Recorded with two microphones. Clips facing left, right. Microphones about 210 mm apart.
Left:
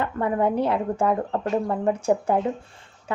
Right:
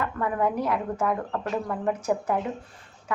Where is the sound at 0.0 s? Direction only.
25° left (ahead or behind).